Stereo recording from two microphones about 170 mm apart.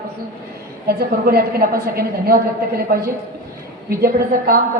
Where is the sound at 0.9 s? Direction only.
65° right (ahead or behind).